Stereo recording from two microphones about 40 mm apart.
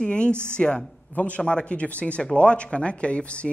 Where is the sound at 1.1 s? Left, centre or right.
Left.